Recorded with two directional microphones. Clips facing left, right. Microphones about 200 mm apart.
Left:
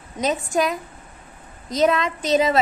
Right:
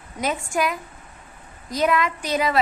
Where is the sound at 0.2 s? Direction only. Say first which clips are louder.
Left 3 dB; 20° left (ahead or behind).